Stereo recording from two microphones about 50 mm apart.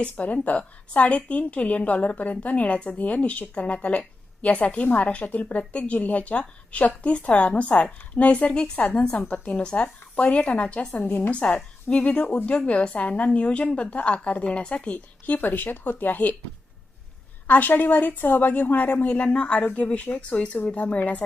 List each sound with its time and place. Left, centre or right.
0.0 s a woman's voice: left
17.4 s a woman's voice: left